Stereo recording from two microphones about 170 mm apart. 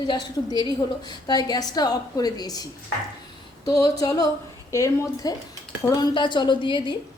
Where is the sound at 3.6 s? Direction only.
20° left (ahead or behind).